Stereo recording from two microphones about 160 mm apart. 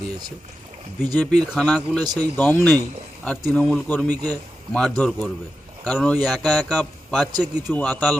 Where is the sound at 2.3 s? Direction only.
10° left (ahead or behind).